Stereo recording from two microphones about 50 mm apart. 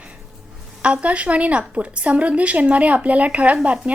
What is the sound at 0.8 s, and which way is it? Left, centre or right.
A woman's voice, right.